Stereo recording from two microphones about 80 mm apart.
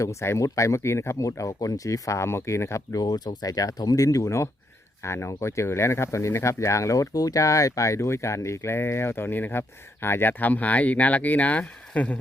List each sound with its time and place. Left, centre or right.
0.0 s speech: left
3.0 s speech: left; by 12.1 s centre